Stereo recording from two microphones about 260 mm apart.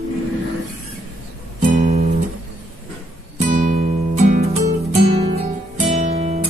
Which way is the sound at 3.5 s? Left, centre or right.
Right.